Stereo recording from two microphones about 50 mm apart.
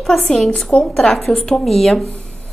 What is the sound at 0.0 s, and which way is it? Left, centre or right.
Speech, centre.